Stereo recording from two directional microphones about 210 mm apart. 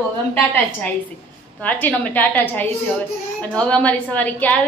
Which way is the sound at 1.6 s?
10° left (ahead or behind).